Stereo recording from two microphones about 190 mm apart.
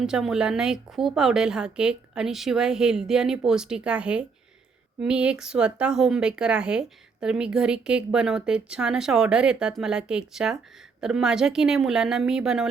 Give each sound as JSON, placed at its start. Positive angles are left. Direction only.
{"t": 0.0, "sound": "speech", "side_deg": 0}